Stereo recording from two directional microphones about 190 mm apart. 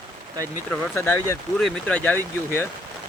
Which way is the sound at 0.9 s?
15° left (ahead or behind).